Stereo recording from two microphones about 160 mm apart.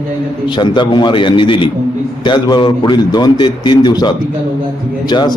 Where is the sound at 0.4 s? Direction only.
30° left (ahead or behind).